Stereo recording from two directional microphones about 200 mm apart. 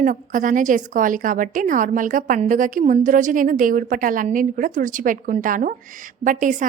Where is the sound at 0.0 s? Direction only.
40° right (ahead or behind).